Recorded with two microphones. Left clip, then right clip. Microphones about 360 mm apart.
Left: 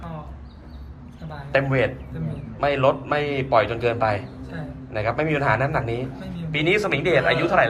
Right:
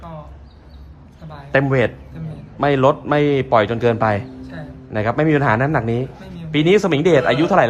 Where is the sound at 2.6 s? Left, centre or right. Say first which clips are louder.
Right 5 dB; right.